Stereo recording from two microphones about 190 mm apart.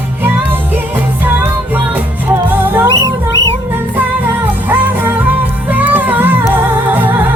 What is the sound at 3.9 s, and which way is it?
Music, 10° right (ahead or behind).